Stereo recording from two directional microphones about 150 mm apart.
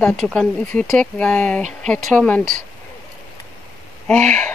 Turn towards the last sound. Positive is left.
turn(degrees=10)  # may be behind; listen again after turning